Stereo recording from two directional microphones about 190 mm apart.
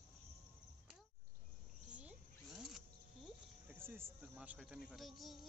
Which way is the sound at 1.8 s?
5° right (ahead or behind).